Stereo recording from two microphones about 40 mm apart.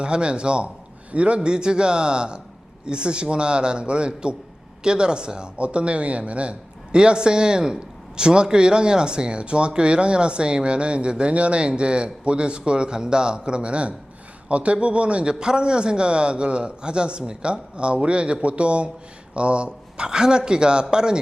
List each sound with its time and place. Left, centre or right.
0.0 s speech: right